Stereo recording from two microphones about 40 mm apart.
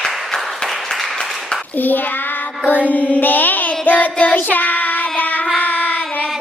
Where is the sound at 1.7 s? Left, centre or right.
Left.